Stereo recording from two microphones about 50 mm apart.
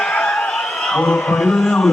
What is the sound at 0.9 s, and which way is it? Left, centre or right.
Speech, centre.